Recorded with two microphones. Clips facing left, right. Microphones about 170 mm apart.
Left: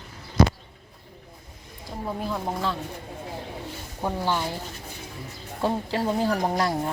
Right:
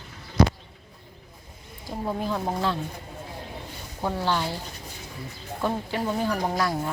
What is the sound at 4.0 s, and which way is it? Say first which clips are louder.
Speech: even; 15° left (ahead or behind).